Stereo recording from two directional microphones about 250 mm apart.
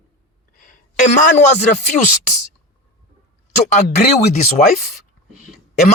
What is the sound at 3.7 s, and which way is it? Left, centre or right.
Speech, left.